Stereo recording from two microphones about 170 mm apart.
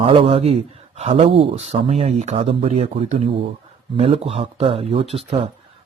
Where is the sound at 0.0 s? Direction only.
30° right (ahead or behind).